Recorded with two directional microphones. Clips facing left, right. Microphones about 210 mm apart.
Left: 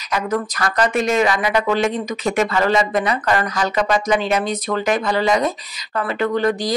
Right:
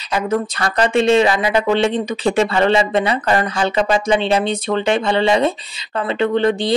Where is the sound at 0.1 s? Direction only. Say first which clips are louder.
Right 2 dB; 25° right (ahead or behind).